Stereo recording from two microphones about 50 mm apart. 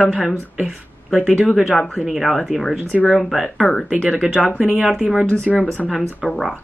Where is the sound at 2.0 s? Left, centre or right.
Centre.